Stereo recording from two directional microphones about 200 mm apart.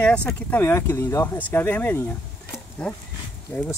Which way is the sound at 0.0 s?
5° left (ahead or behind).